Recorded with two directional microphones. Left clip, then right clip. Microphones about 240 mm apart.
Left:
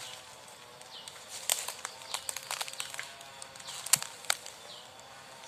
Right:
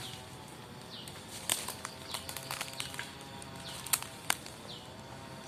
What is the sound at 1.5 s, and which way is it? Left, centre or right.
Crumpling, centre.